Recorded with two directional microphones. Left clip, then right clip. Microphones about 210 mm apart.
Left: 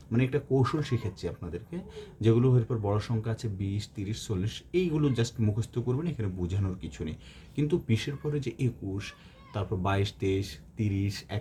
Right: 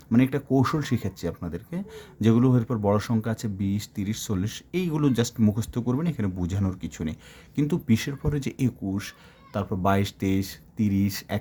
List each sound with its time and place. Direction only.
0.1 s speech: 50° right (ahead or behind)